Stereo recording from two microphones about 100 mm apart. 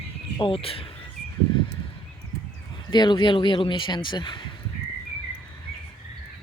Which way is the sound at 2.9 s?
45° left (ahead or behind).